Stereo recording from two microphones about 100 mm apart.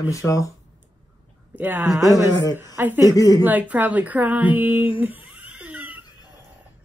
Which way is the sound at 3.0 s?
35° left (ahead or behind).